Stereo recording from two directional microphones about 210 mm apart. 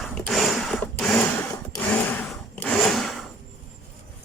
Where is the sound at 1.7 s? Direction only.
10° left (ahead or behind).